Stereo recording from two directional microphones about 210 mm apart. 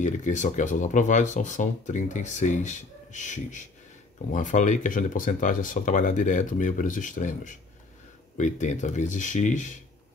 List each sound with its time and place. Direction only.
0.0 s speech: 35° left (ahead or behind)